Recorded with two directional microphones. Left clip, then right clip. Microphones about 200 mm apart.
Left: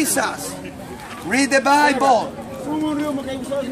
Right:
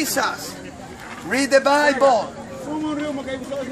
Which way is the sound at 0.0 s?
5° right (ahead or behind).